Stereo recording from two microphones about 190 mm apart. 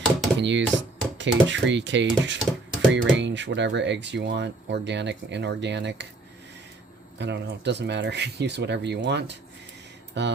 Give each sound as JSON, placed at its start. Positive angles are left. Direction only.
{"t": 0.3, "sound": "speech", "side_deg": -70}
{"t": 7.2, "sound": "speech", "side_deg": -65}